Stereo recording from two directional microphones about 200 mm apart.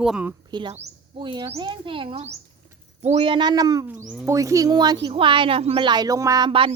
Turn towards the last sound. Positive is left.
turn(degrees=-25)  # may be behind; listen again after turning